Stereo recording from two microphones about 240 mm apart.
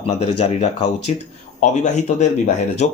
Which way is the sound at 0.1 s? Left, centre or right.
Left.